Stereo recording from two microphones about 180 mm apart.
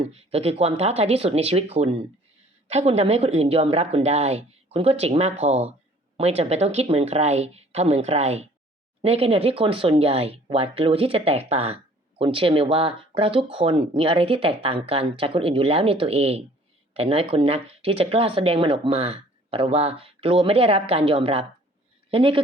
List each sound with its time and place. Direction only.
0.0 s a man's voice: 35° right (ahead or behind)